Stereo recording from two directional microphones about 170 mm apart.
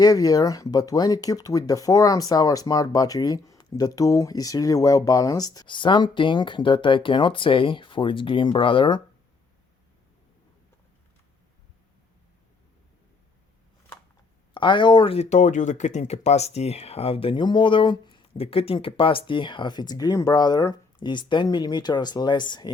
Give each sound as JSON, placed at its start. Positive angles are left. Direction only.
{"t": 0.0, "sound": "speech", "side_deg": 20}
{"t": 14.5, "sound": "speech", "side_deg": 30}